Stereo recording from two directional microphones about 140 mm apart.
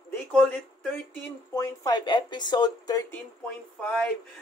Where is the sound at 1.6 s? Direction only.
30° left (ahead or behind).